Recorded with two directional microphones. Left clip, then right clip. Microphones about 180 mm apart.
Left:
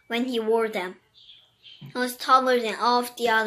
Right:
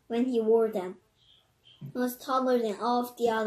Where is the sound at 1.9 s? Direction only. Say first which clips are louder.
Left 9 dB; centre (ahead or behind).